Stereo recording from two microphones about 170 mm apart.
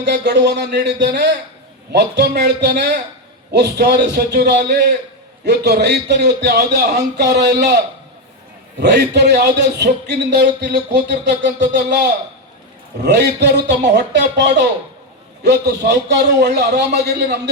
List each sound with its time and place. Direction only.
0.0 s a man's voice: 80° right
8.8 s a man's voice: 85° right